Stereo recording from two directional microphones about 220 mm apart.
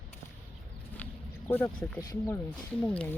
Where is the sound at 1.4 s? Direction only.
10° left (ahead or behind).